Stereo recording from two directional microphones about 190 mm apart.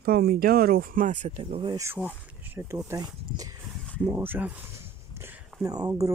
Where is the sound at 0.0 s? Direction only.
55° right (ahead or behind); by 1.8 s 30° right (ahead or behind).